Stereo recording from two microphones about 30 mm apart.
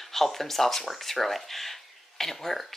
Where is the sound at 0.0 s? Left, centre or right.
Centre.